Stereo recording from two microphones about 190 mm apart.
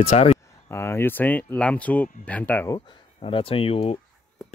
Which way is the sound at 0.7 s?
15° left (ahead or behind).